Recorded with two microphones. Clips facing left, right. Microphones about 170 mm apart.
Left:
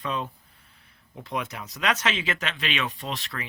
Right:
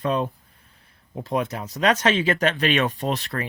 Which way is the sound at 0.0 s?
45° right (ahead or behind).